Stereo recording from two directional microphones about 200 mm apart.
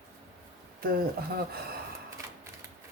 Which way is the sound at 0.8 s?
50° right (ahead or behind).